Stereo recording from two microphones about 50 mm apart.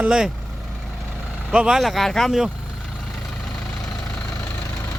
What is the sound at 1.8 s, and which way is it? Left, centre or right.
Speech, centre.